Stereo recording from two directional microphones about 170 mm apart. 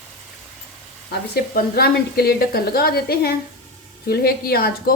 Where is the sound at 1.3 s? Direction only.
65° left (ahead or behind).